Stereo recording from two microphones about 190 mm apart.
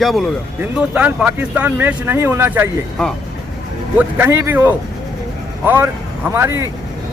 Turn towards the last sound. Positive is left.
turn(degrees=-15)  # may be behind; listen again after turning